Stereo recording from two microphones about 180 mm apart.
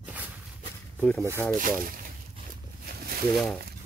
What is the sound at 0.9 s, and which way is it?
Zipper, 5° left (ahead or behind).